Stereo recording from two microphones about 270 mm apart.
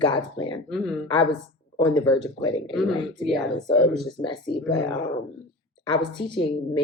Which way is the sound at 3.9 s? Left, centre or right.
Centre.